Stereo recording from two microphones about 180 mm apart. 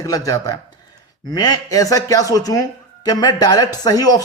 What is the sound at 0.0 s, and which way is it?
Speech, 20° left (ahead or behind).